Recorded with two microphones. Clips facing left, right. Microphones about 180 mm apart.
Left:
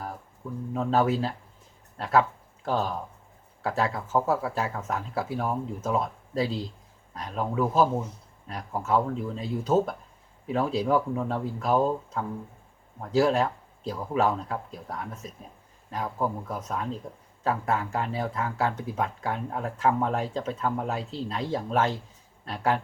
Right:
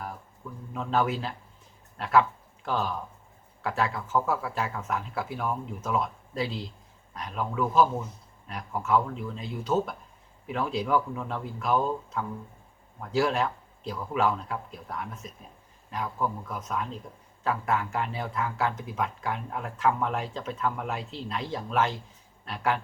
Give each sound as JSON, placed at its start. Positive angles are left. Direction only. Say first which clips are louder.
{"t": 0.7, "sound": "speech", "louder": "left 3 dB", "side_deg": 40}